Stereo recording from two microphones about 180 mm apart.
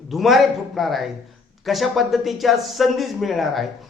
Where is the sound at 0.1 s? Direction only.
Centre (ahead or behind).